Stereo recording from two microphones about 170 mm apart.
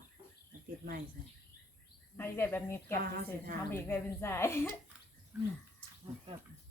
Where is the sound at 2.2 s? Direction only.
10° left (ahead or behind).